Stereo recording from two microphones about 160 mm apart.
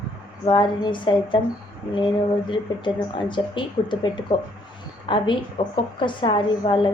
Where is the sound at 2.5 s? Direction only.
30° left (ahead or behind).